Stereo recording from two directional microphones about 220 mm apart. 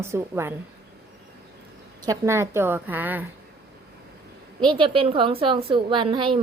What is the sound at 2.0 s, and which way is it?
A woman's voice, 10° right (ahead or behind).